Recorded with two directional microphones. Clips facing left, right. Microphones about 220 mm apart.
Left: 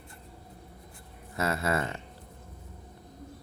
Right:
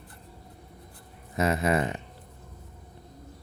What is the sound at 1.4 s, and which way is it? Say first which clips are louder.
Speech: right 4 dB; 20° right (ahead or behind).